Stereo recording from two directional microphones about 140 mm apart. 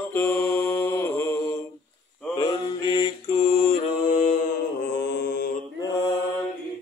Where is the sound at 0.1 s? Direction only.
15° left (ahead or behind).